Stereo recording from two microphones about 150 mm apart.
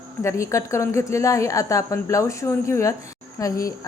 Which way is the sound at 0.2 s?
20° left (ahead or behind).